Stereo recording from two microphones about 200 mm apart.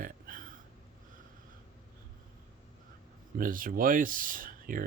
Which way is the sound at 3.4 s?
45° right (ahead or behind).